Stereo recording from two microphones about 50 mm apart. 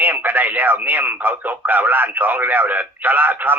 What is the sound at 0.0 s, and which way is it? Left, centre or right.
Speech, right.